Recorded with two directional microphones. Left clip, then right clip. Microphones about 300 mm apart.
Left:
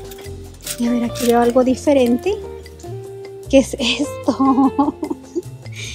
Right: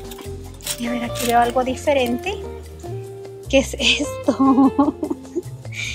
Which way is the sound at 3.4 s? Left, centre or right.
Centre.